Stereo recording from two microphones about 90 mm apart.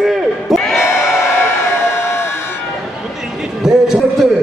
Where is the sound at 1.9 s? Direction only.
30° left (ahead or behind).